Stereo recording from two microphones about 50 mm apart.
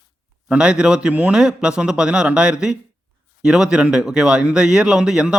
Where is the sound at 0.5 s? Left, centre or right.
Centre.